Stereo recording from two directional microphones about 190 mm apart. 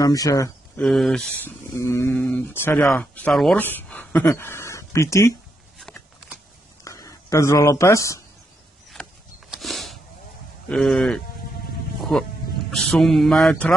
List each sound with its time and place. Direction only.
0.0 s speech: 20° left (ahead or behind)
0.8 s mantra: centre (ahead or behind)
1.8 s speech: 15° left (ahead or behind)
5.8 s a sound: centre (ahead or behind)
6.8 s a sound: 15° left (ahead or behind)
9.0 s a sound: centre (ahead or behind)
10.7 s mantra: centre (ahead or behind)
12.0 s music: centre (ahead or behind)
12.7 s mantra: centre (ahead or behind)